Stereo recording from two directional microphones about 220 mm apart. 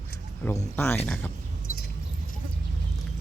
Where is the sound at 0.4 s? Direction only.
10° left (ahead or behind).